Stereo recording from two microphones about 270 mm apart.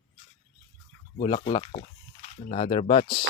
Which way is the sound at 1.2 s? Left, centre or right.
Centre.